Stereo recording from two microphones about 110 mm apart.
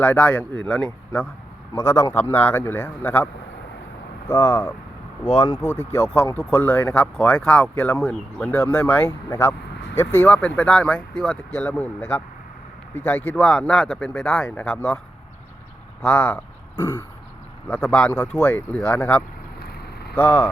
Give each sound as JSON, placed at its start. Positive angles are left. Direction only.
{"t": 0.0, "sound": "speech", "side_deg": 15}
{"t": 1.7, "sound": "a man's voice", "side_deg": 25}
{"t": 4.3, "sound": "a man's voice", "side_deg": 20}
{"t": 9.0, "sound": "speech", "side_deg": 25}
{"t": 16.0, "sound": "speech", "side_deg": 15}
{"t": 17.7, "sound": "speech", "side_deg": 5}
{"t": 18.1, "sound": "speech", "side_deg": 15}